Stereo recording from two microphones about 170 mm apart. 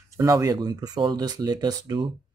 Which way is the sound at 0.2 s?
20° right (ahead or behind).